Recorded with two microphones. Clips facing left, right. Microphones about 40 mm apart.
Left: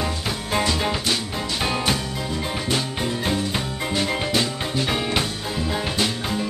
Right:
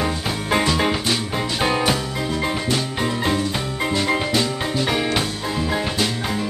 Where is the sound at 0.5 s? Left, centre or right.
Right; by 2.0 s centre.